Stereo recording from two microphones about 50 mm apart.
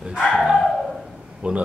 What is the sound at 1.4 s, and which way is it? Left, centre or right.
Speech, right.